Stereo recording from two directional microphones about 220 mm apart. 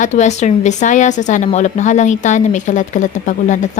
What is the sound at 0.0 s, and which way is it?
Speech, 35° left (ahead or behind).